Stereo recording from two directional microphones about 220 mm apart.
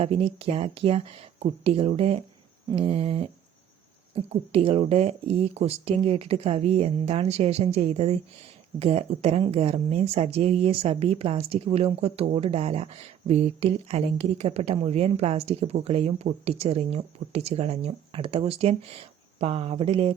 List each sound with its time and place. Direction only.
0.0 s speech: 25° right (ahead or behind)